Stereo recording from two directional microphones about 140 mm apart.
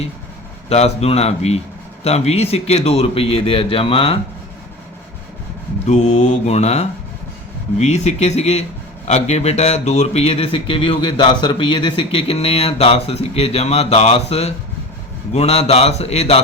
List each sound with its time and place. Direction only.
0.7 s speech: 50° left (ahead or behind)
5.8 s speech: 55° left (ahead or behind)